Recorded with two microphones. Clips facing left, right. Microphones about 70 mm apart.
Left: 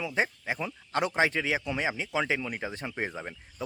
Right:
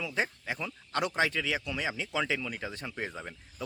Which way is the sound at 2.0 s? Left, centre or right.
Centre.